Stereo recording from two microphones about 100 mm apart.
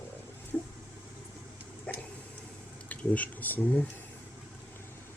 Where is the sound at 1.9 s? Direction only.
10° left (ahead or behind).